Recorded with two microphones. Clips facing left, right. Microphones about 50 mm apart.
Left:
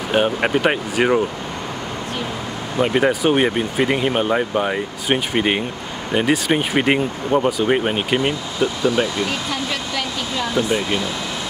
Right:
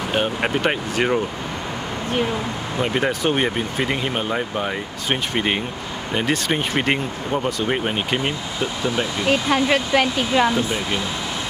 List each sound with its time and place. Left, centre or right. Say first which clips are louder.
0.1 s speech: left 5 dB; centre
2.8 s speech: left 4 dB; centre
9.2 s speech: right 4 dB; right